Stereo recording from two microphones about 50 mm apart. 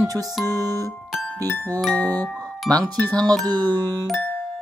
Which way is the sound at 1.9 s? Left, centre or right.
Left.